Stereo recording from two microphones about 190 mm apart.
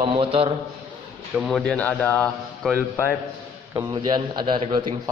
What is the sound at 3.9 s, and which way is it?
Speech, 20° right (ahead or behind).